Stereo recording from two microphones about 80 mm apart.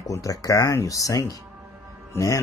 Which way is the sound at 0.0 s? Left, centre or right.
Left.